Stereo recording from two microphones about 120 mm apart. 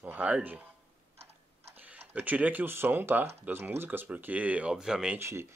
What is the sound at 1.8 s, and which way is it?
Speech, 15° right (ahead or behind).